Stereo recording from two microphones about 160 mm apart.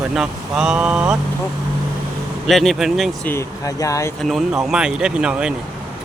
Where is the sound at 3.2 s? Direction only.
20° left (ahead or behind).